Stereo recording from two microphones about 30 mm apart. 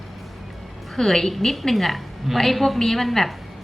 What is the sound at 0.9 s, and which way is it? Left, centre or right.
A woman's voice, centre.